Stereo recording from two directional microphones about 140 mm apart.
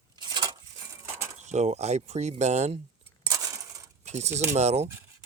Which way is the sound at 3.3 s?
25° right (ahead or behind).